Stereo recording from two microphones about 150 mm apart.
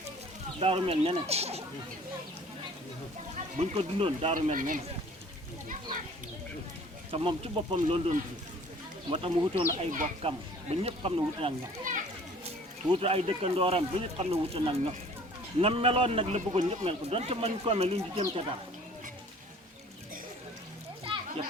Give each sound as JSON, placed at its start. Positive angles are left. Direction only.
{"t": 0.6, "sound": "speech", "side_deg": -40}
{"t": 3.3, "sound": "a man's voice", "side_deg": -45}
{"t": 4.4, "sound": "speech", "side_deg": -60}
{"t": 7.1, "sound": "a man's voice", "side_deg": -40}
{"t": 11.9, "sound": "children playing", "side_deg": -60}
{"t": 12.9, "sound": "a man's voice", "side_deg": -40}
{"t": 21.0, "sound": "a sound", "side_deg": -35}